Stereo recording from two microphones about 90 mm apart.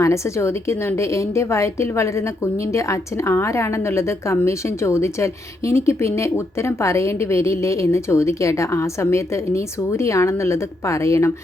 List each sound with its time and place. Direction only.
0.0 s a woman's voice: 30° left (ahead or behind)